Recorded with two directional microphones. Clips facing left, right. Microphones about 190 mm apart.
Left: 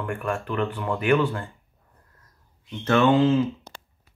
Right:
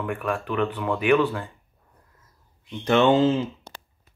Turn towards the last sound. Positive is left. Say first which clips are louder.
# right 1 dB
turn(degrees=-25)  # may be behind; listen again after turning